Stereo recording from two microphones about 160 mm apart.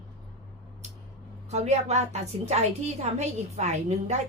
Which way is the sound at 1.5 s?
45° right (ahead or behind).